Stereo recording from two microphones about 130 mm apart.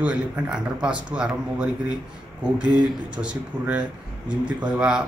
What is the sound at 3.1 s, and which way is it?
Speech, 10° right (ahead or behind).